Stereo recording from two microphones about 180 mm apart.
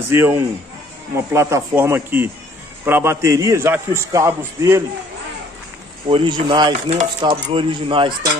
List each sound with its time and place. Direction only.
0.1 s a man's voice: 15° right (ahead or behind)
6.0 s speech: 25° right (ahead or behind)
6.7 s chopping: 45° right (ahead or behind)
7.2 s speech: 30° right (ahead or behind)